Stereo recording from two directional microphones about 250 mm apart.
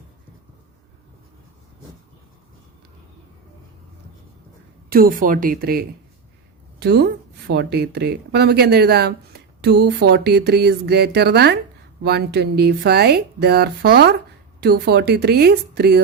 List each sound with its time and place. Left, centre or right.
4.9 s speech: right